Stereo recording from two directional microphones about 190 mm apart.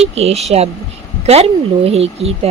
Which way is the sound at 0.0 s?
35° right (ahead or behind).